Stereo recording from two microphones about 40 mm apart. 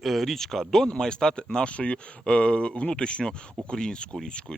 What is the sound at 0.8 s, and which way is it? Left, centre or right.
Speech, left.